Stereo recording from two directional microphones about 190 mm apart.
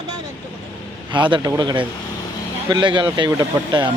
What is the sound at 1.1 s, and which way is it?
A man's voice, 25° right (ahead or behind).